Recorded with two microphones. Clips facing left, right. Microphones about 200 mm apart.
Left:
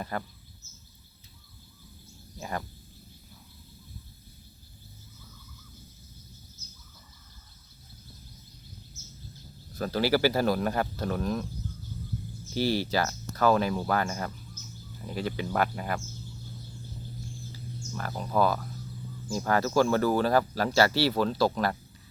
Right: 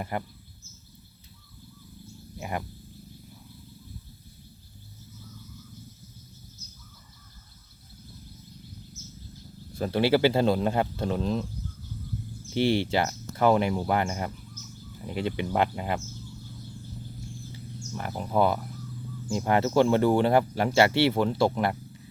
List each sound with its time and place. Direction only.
0.0 s speech: 15° right (ahead or behind)
2.4 s speech: 15° right (ahead or behind)
9.7 s speech: 25° right (ahead or behind)
12.5 s speech: 25° right (ahead or behind)
17.5 s a sound: 20° right (ahead or behind)
19.3 s speech: 20° right (ahead or behind)